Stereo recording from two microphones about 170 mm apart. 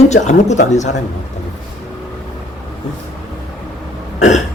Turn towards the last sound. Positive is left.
turn(degrees=45)  # may be behind; listen again after turning